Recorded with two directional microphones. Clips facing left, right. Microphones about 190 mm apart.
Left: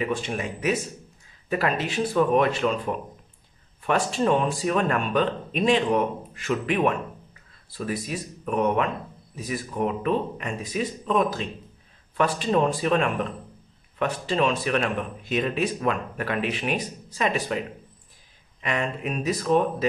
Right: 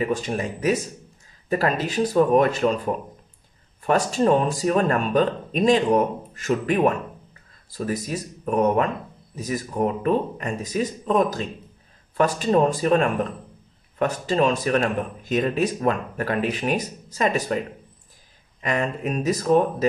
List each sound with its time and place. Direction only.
0.0 s speech: 40° right (ahead or behind)
3.8 s speech: 40° right (ahead or behind)
18.6 s speech: 40° right (ahead or behind)